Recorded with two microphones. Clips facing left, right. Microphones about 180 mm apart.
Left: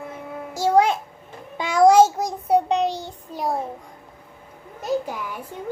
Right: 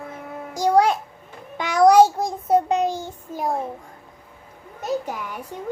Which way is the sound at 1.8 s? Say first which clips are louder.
Right 1 dB; 25° left (ahead or behind).